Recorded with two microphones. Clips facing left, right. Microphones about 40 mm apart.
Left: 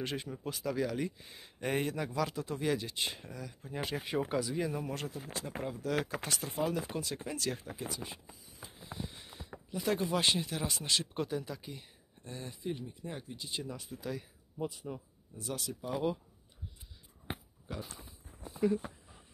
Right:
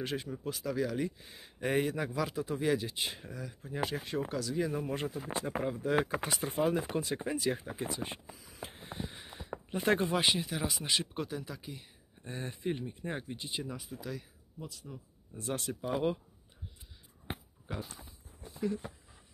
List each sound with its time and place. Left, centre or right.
0.0 s speech: centre
4.3 s speech: centre
4.6 s speech: centre
4.8 s speech: centre
7.8 s speech: right
8.5 s a sound: right
9.0 s a sound: centre
9.5 s speech: right
10.1 s speech: centre
12.2 s speech: right
13.5 s speech: centre
14.6 s speech: left
15.3 s speech: right
17.7 s speech: centre